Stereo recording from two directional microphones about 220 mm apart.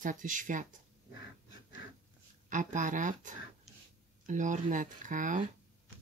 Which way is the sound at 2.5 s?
35° right (ahead or behind).